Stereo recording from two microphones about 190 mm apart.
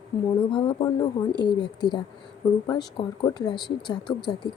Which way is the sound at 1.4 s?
25° left (ahead or behind).